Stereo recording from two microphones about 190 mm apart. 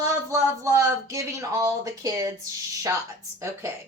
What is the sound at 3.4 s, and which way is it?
Speech, 15° right (ahead or behind).